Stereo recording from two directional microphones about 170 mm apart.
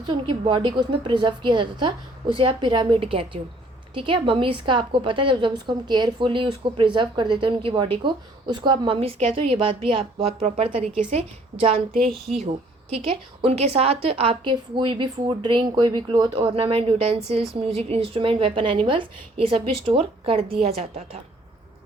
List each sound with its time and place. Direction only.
0.1 s a woman's voice: 30° right (ahead or behind)